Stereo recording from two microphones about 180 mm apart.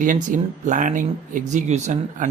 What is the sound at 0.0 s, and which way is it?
Speech, 45° right (ahead or behind).